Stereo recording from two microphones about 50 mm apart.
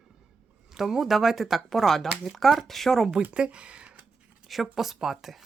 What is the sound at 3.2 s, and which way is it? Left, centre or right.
Speech, right.